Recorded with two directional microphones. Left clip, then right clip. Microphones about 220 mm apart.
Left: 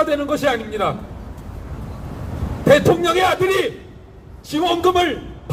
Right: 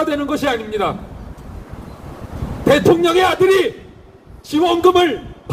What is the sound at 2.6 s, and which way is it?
Speech, 40° right (ahead or behind).